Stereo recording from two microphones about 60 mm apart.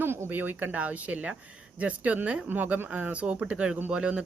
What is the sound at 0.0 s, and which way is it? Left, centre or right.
Cricket, right.